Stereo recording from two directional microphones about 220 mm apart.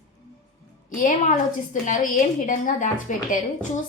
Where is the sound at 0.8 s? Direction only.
35° left (ahead or behind).